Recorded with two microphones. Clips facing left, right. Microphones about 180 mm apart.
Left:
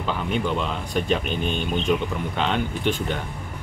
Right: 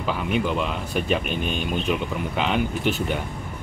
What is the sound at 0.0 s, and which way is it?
A man's voice, 5° right (ahead or behind).